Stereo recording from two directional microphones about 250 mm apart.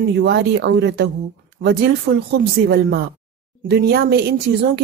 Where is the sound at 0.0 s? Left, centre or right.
Right.